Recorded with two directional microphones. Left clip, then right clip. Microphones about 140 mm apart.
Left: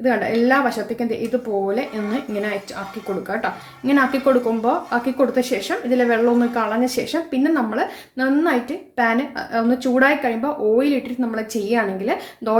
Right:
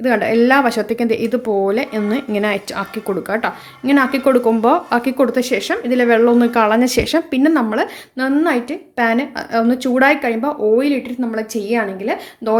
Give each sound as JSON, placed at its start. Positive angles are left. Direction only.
{"t": 0.0, "sound": "speech", "side_deg": -50}
{"t": 3.2, "sound": "speech", "side_deg": -45}